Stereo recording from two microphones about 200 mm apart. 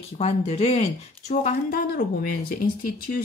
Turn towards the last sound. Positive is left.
turn(degrees=45)  # may be behind; listen again after turning